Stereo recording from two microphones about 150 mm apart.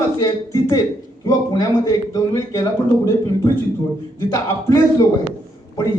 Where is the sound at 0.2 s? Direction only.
20° left (ahead or behind).